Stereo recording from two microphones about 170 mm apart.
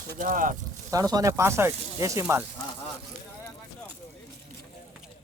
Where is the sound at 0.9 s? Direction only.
20° right (ahead or behind).